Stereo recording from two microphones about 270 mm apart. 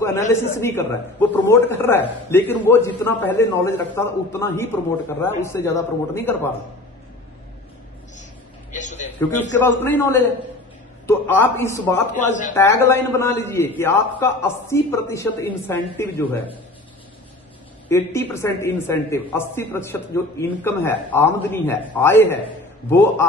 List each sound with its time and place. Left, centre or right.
0.3 s speech: centre
8.7 s a sound: left
9.4 s speech: centre
12.3 s speech: left
12.5 s speech: centre
17.8 s speech: centre